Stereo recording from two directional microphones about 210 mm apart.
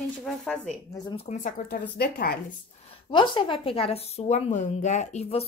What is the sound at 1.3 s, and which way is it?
A woman's voice, 40° left (ahead or behind).